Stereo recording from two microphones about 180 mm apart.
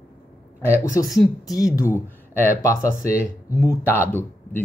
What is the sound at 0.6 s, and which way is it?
A woman's voice, 15° left (ahead or behind).